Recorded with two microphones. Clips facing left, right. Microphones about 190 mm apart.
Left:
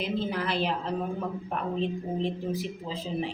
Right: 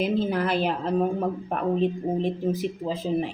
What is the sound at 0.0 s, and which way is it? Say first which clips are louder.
A woman's voice: right 6 dB; 45° right (ahead or behind).